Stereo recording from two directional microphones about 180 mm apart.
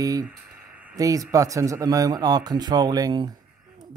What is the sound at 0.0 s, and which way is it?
Speech, 20° right (ahead or behind).